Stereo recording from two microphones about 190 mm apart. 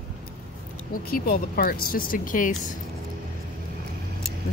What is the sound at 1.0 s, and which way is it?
Speech, 50° left (ahead or behind).